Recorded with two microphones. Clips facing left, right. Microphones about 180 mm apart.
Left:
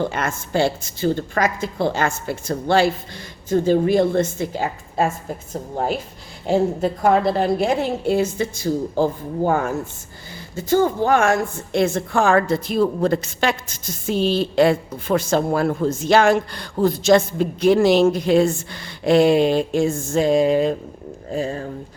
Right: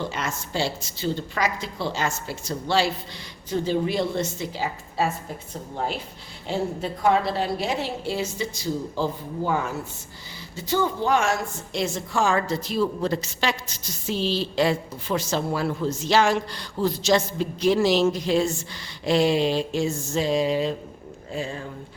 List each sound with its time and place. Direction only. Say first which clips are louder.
0.0 s a woman's voice: left 6 dB; 55° left (ahead or behind)